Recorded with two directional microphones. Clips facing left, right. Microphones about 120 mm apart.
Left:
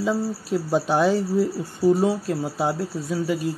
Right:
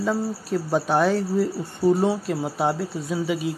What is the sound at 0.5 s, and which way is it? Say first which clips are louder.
Speech: left 1 dB; 10° left (ahead or behind).